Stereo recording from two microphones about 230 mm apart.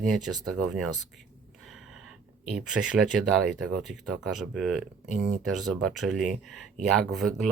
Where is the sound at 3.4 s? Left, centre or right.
Centre.